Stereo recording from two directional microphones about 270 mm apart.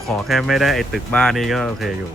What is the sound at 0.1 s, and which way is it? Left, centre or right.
Speech, centre.